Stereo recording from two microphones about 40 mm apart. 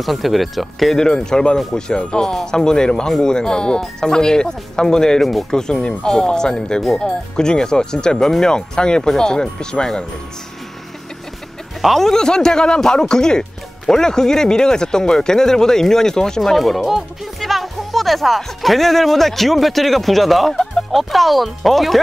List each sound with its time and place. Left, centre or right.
0.0 s speech: centre
0.9 s speech: centre
11.8 s speech: centre
12.1 s speech: centre
16.3 s speech: centre